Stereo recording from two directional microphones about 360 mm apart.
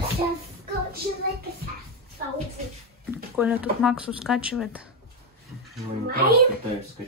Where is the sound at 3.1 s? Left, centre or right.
Centre.